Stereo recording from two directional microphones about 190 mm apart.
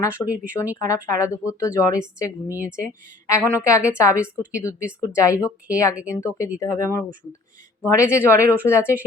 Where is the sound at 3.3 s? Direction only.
15° left (ahead or behind).